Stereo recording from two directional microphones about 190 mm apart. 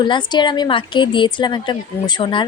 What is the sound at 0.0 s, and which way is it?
A woman's voice, 25° left (ahead or behind).